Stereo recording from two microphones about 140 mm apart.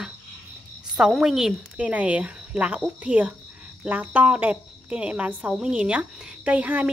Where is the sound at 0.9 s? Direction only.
5° right (ahead or behind).